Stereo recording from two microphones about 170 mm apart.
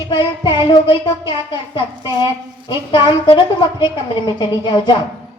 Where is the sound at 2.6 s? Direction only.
30° left (ahead or behind).